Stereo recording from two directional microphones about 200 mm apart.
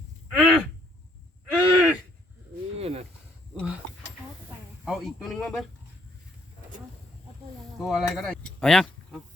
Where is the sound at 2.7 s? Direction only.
30° right (ahead or behind).